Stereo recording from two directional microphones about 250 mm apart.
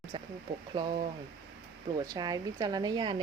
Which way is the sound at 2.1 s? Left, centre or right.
Centre.